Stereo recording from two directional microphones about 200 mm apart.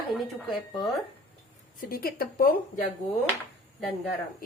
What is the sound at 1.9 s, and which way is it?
Speech, 50° left (ahead or behind).